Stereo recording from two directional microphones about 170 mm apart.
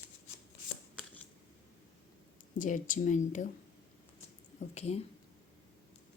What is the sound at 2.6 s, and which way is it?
Speech, 50° left (ahead or behind).